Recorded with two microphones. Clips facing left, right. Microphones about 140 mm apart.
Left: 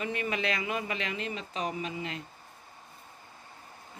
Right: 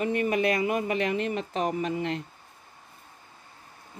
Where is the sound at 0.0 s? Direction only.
50° right (ahead or behind).